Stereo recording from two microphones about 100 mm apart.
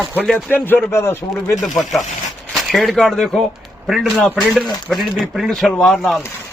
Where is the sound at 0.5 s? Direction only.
20° left (ahead or behind).